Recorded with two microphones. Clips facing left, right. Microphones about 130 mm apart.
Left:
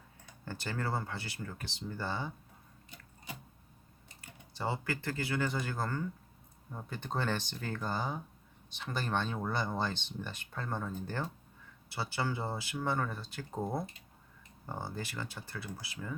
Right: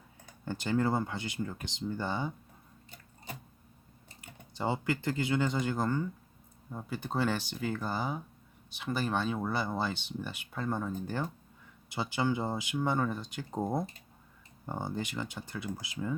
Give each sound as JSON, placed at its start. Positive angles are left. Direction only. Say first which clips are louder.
{"t": 0.4, "sound": "speech", "louder": "right 8 dB", "side_deg": -20}
{"t": 4.2, "sound": "a sound", "louder": "right 3 dB", "side_deg": -20}
{"t": 5.0, "sound": "speech", "louder": "right 4 dB", "side_deg": -20}